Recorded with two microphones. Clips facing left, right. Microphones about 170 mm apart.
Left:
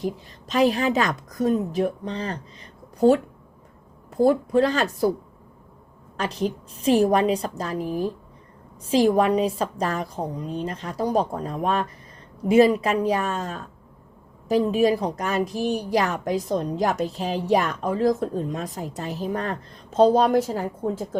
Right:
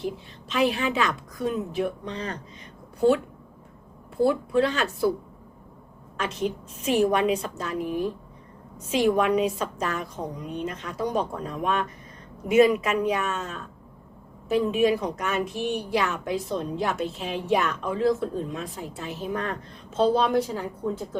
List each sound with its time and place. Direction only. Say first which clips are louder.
0.0 s a woman's voice: left 3 dB; 40° left (ahead or behind)
4.2 s a woman's voice: left 3 dB; 40° left (ahead or behind)
6.1 s a woman's voice: left 2 dB; 35° left (ahead or behind)